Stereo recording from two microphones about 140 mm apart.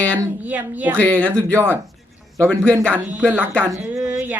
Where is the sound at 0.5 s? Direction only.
10° right (ahead or behind).